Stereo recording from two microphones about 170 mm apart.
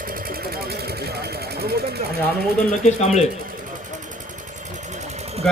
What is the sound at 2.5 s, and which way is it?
Speech, 45° left (ahead or behind).